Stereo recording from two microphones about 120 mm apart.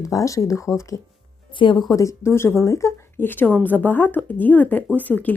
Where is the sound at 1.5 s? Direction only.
45° left (ahead or behind); by 5.3 s 15° left (ahead or behind).